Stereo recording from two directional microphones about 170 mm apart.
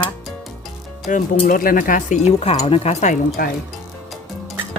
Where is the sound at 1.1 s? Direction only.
50° left (ahead or behind).